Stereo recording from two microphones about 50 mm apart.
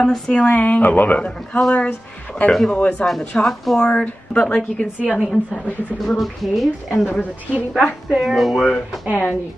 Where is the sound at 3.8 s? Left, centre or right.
Left.